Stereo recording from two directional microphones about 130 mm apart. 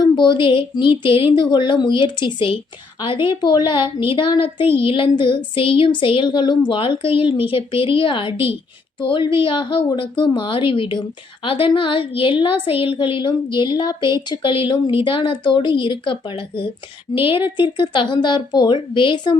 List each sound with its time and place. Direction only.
0.0 s a woman's voice: 35° left (ahead or behind)